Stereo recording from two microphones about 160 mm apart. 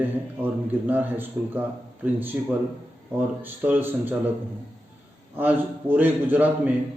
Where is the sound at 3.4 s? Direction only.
10° right (ahead or behind).